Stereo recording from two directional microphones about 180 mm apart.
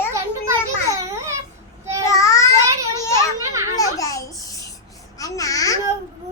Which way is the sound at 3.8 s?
20° left (ahead or behind).